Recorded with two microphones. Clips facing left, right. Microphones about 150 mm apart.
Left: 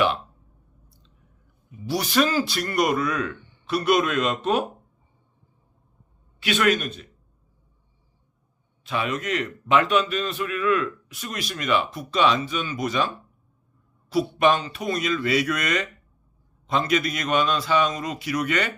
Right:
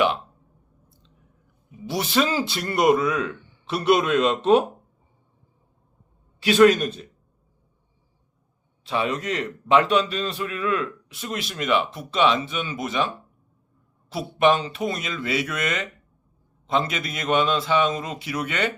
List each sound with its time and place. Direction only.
1.9 s a man's voice: 25° right (ahead or behind)
6.4 s a man's voice: 35° right (ahead or behind)
8.8 s a man's voice: 30° right (ahead or behind)
14.1 s a man's voice: 25° right (ahead or behind)